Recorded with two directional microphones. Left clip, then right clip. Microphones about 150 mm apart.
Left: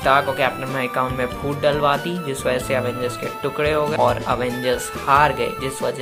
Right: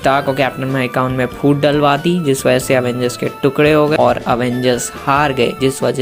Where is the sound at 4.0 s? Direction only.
25° right (ahead or behind).